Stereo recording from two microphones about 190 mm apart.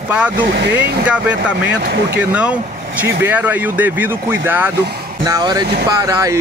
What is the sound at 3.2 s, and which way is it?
Speech, 10° right (ahead or behind).